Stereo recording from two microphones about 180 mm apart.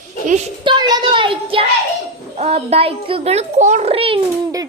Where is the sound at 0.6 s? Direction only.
25° right (ahead or behind).